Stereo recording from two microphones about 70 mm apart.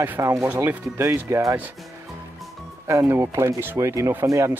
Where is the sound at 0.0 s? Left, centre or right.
Right.